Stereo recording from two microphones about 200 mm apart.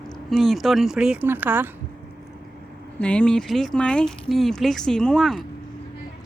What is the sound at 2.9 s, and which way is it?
Speech, 5° left (ahead or behind).